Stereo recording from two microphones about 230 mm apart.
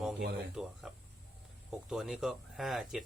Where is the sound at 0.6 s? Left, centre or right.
Centre.